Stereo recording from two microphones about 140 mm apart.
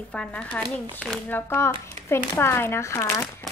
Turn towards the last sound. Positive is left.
turn(degrees=20)  # may be behind; listen again after turning